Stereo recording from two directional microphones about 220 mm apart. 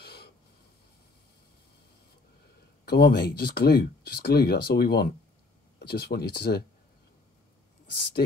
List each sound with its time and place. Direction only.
0.0 s snort: 45° left (ahead or behind)
2.8 s speech: 50° left (ahead or behind)